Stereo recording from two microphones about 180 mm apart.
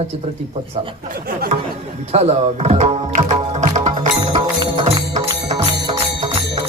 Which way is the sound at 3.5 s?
40° right (ahead or behind).